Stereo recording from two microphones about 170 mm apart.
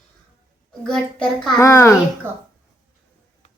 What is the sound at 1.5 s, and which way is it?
Speech, 15° left (ahead or behind).